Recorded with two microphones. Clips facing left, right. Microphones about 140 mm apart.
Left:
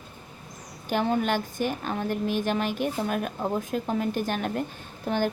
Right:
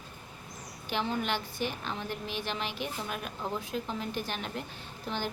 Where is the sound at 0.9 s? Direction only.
50° left (ahead or behind).